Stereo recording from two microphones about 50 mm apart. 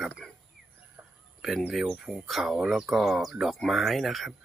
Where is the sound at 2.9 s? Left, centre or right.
Centre.